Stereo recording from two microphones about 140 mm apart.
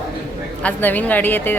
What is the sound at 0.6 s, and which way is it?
Speech, 10° left (ahead or behind).